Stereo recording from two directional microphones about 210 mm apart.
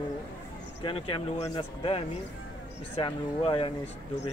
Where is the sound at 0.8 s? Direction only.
25° left (ahead or behind).